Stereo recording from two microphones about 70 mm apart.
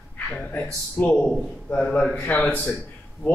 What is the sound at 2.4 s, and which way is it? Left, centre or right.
Speech, centre.